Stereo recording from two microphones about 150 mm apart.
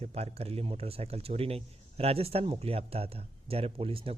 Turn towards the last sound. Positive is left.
turn(degrees=-40)  # may be behind; listen again after turning